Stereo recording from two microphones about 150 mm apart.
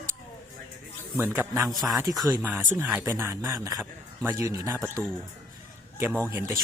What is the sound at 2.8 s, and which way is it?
Speech, 10° right (ahead or behind).